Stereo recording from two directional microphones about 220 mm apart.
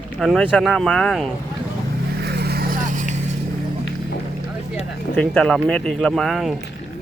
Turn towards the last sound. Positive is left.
turn(degrees=0)  # may be behind; listen again after turning